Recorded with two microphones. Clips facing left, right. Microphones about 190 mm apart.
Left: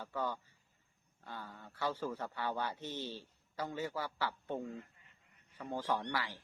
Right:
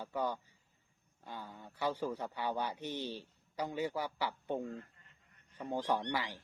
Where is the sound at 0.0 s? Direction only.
15° right (ahead or behind).